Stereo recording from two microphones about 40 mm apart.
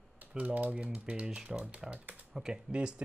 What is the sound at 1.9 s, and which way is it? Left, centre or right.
Speech, right.